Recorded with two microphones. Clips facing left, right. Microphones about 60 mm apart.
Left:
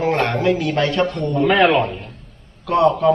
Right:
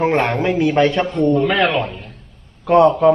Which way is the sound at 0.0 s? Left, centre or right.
Centre.